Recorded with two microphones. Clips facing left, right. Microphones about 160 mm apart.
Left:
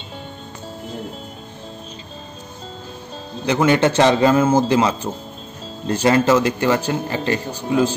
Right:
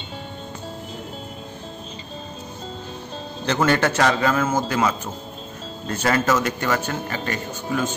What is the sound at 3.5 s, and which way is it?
A man's voice, 15° left (ahead or behind).